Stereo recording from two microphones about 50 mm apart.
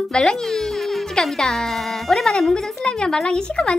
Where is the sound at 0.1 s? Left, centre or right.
Centre.